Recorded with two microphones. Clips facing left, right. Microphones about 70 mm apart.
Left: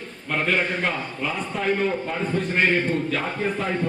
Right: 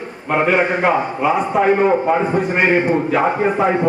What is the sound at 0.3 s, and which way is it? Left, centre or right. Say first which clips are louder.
A man's voice: right 8 dB; right.